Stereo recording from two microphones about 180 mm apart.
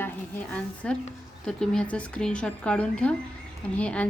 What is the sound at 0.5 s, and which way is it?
A woman's voice, 5° left (ahead or behind).